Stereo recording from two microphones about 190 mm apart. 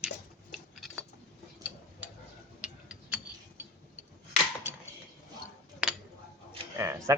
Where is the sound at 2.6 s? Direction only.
5° right (ahead or behind).